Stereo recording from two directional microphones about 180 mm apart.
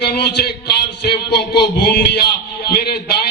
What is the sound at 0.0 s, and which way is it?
A man's voice, 65° left (ahead or behind).